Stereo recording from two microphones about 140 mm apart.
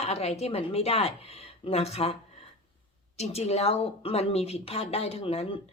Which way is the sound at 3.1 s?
50° left (ahead or behind).